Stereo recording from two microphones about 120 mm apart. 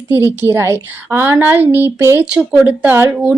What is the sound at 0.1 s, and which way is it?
A woman's voice, 20° right (ahead or behind).